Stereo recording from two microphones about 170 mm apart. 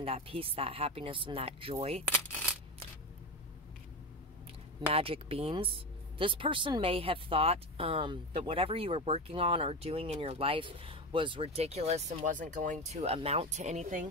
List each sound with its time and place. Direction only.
0.0 s speech: 35° right (ahead or behind)
4.9 s speech: 35° right (ahead or behind)